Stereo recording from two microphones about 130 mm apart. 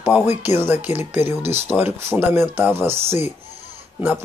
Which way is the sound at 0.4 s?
15° right (ahead or behind).